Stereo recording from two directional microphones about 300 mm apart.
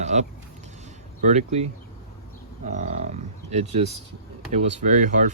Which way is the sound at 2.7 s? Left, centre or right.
Right.